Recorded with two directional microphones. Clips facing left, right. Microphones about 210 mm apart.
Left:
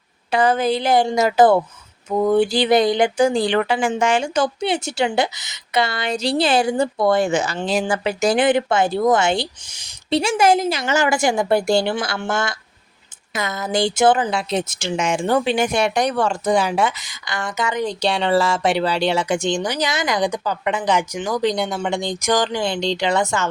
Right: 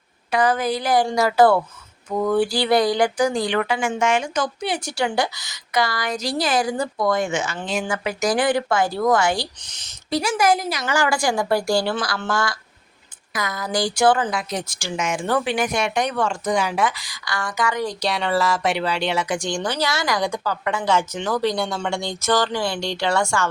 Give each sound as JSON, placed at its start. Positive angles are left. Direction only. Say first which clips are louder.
{"t": 0.3, "sound": "speech", "louder": "left 3 dB", "side_deg": 25}
{"t": 9.6, "sound": "speech", "louder": "even", "side_deg": 10}
{"t": 10.1, "sound": "speech", "louder": "left 3 dB", "side_deg": 25}